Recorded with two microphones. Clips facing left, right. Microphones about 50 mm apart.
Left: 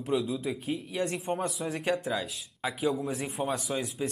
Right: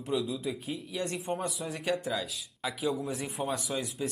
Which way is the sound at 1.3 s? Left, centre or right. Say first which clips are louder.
Left 3 dB; left.